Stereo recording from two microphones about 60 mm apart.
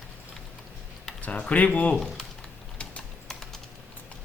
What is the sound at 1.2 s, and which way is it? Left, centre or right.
Speech, left.